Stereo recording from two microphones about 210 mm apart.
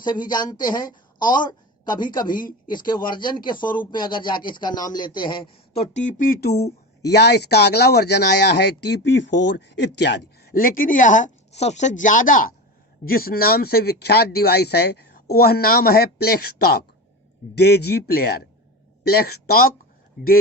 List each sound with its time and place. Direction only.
0.0 s a woman's voice: 20° left (ahead or behind)
2.3 s speech: 40° left (ahead or behind)
2.6 s speech: 20° left (ahead or behind); by 19.7 s 45° left (ahead or behind)